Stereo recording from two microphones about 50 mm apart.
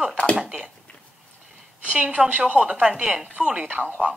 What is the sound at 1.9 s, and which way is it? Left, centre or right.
A woman's voice, right.